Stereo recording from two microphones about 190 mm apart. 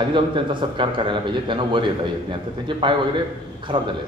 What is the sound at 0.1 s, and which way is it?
A man's voice, 25° right (ahead or behind).